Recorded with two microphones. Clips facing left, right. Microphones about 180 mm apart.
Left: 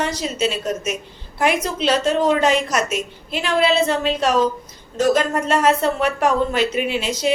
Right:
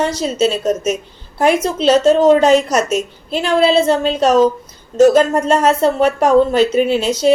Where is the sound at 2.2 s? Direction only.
40° right (ahead or behind).